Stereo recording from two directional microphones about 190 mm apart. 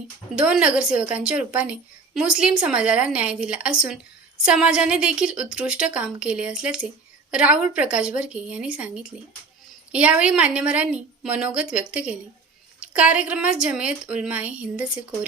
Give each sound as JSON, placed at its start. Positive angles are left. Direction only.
{"t": 0.3, "sound": "a woman's voice", "side_deg": -5}